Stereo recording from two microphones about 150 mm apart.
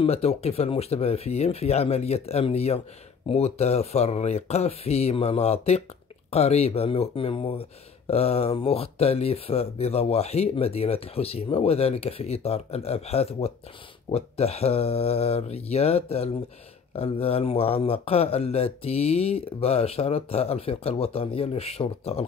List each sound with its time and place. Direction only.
0.0 s speech: 45° left (ahead or behind)